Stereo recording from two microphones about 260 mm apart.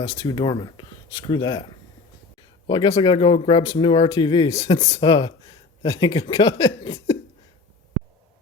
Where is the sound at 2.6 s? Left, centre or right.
Centre.